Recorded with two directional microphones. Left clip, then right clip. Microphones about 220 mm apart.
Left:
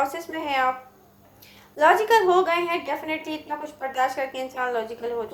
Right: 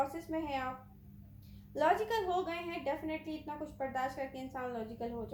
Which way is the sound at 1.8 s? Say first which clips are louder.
Left 14 dB; 20° left (ahead or behind).